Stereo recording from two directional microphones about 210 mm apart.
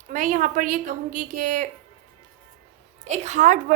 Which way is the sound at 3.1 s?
35° right (ahead or behind).